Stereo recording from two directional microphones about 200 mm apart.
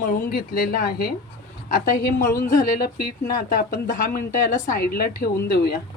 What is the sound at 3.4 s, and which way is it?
A woman's voice, 40° left (ahead or behind).